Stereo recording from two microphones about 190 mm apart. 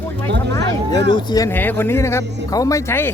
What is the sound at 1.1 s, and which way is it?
Speech, 20° left (ahead or behind).